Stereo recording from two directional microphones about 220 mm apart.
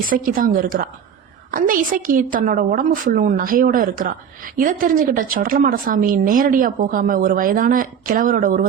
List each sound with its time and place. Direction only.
0.1 s a woman's voice: 40° right (ahead or behind)